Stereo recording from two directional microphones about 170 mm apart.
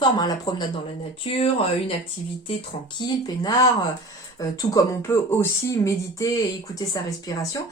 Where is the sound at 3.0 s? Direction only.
20° left (ahead or behind).